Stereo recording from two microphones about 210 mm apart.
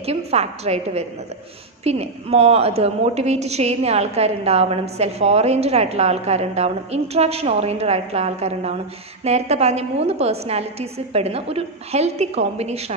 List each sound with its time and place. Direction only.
0.0 s a woman's voice: 30° right (ahead or behind)